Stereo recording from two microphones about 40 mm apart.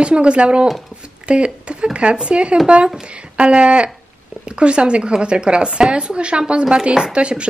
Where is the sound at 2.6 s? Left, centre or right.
Right.